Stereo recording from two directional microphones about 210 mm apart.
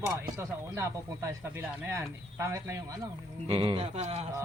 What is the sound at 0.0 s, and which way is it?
Speech, 10° right (ahead or behind).